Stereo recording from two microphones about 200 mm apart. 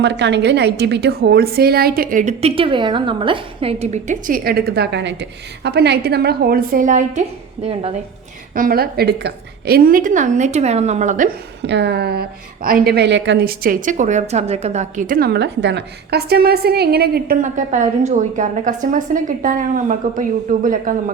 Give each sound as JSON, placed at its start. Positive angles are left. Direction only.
{"t": 0.0, "sound": "a woman's voice", "side_deg": -60}
{"t": 7.6, "sound": "a woman's voice", "side_deg": -30}
{"t": 8.5, "sound": "a woman's voice", "side_deg": -45}
{"t": 11.6, "sound": "a woman's voice", "side_deg": -60}